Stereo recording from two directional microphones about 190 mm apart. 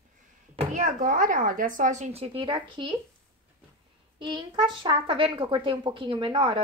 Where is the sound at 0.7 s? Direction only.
45° right (ahead or behind); by 2.9 s 25° right (ahead or behind).